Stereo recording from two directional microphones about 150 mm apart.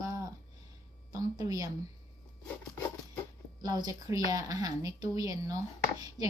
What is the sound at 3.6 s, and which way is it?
A woman's voice, 25° right (ahead or behind).